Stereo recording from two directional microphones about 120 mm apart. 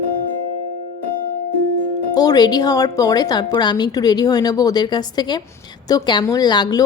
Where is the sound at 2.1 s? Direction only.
35° left (ahead or behind).